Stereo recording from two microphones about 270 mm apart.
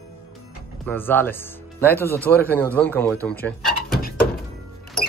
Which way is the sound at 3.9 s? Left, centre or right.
Left.